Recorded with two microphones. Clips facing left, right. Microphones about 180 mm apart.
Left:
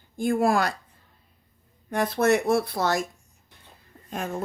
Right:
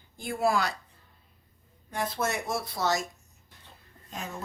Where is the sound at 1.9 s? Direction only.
60° left (ahead or behind).